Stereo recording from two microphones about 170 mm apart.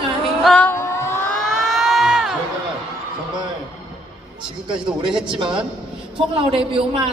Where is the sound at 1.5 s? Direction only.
Centre (ahead or behind).